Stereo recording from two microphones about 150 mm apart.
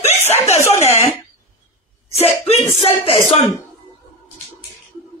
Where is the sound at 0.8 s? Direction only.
15° left (ahead or behind).